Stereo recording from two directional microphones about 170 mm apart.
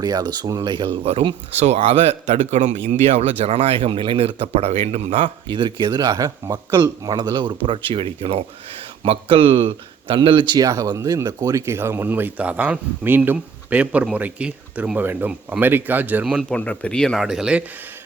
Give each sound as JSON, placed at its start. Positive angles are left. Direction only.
{"t": 0.0, "sound": "speech", "side_deg": -25}